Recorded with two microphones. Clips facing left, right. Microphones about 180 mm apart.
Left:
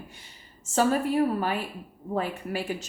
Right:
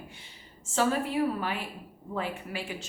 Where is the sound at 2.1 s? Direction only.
45° left (ahead or behind).